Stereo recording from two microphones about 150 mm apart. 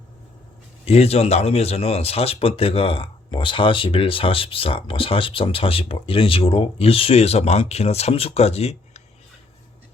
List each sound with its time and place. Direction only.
0.9 s speech: 45° left (ahead or behind)